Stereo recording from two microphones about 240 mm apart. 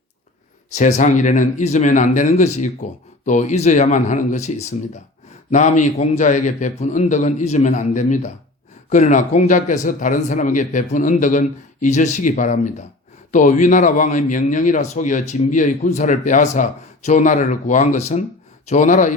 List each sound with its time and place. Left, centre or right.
0.7 s a man's voice: left